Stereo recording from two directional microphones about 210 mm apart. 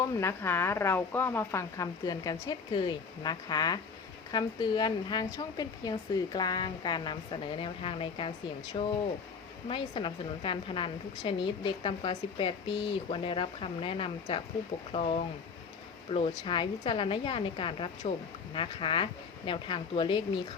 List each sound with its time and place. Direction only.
0.0 s a woman's voice: 15° left (ahead or behind)